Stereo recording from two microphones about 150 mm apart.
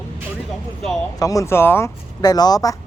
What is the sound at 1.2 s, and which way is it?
Speech, 20° left (ahead or behind).